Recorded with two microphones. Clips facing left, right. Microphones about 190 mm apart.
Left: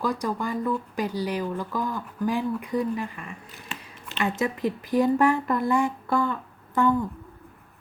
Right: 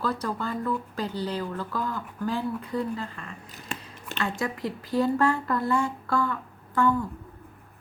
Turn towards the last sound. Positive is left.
turn(degrees=20)  # may be behind; listen again after turning